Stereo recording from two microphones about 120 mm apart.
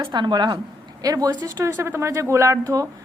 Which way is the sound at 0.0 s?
40° right (ahead or behind).